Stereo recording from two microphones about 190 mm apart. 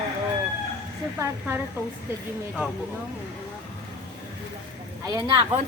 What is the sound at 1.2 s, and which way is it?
Speech, 10° right (ahead or behind).